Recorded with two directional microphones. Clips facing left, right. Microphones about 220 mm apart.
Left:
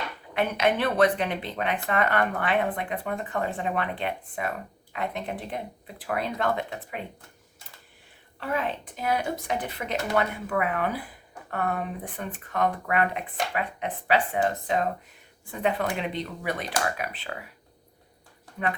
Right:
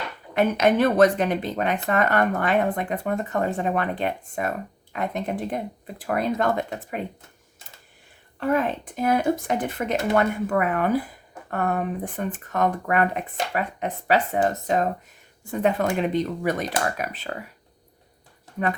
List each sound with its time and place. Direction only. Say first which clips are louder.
0.3 s speech: right 5 dB; 45° right (ahead or behind)
8.4 s speech: right 6 dB; 50° right (ahead or behind)